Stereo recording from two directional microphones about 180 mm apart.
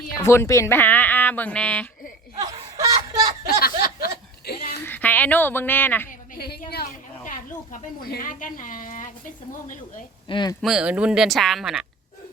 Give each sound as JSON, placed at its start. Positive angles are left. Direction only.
{"t": 0.2, "sound": "speech", "side_deg": 15}
{"t": 2.4, "sound": "snicker", "side_deg": -20}
{"t": 3.4, "sound": "a sound", "side_deg": 55}
{"t": 4.8, "sound": "a woman's voice", "side_deg": 10}
{"t": 6.1, "sound": "a sound", "side_deg": 55}
{"t": 7.3, "sound": "speech", "side_deg": 50}
{"t": 10.2, "sound": "speech", "side_deg": 25}
{"t": 10.6, "sound": "speech", "side_deg": 0}